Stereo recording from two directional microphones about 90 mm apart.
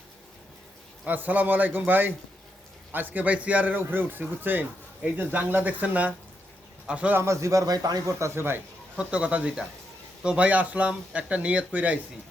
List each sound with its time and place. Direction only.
1.0 s a man's voice: 20° right (ahead or behind)
7.2 s speech: 35° right (ahead or behind)
7.7 s speech: 45° right (ahead or behind); by 8.6 s 25° right (ahead or behind)
9.0 s speech: 10° right (ahead or behind)